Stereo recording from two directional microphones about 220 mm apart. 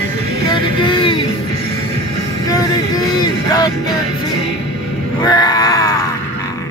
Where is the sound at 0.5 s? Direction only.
20° left (ahead or behind).